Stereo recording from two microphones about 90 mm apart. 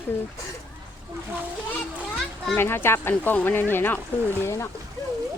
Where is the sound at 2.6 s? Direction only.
25° left (ahead or behind).